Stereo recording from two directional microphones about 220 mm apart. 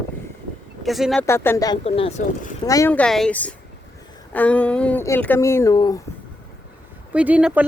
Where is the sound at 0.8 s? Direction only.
Centre (ahead or behind).